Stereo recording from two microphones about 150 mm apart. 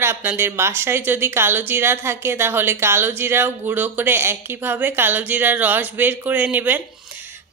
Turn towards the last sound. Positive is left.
turn(degrees=-10)  # may be behind; listen again after turning